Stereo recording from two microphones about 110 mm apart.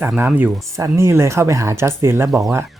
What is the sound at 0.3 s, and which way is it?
Speech, 15° right (ahead or behind).